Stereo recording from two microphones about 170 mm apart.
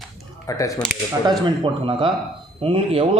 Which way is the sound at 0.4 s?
20° left (ahead or behind).